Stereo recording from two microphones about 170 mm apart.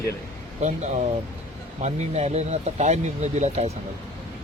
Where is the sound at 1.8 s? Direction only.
40° right (ahead or behind).